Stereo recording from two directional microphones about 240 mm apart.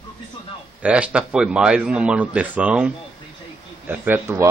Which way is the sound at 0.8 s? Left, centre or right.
Centre.